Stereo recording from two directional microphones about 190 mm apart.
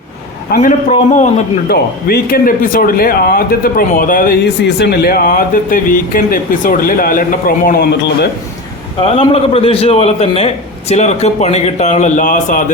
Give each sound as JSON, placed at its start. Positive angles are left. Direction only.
{"t": 0.5, "sound": "a man's voice", "side_deg": 45}
{"t": 1.7, "sound": "speech", "side_deg": 55}
{"t": 9.0, "sound": "a man's voice", "side_deg": 30}